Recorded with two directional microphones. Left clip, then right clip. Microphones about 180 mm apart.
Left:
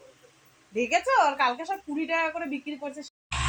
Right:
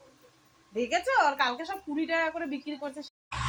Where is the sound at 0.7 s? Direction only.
15° left (ahead or behind).